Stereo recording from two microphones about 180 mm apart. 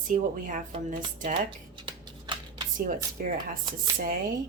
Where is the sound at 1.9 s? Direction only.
25° right (ahead or behind).